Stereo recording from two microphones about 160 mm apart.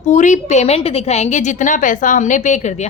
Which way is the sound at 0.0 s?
50° left (ahead or behind).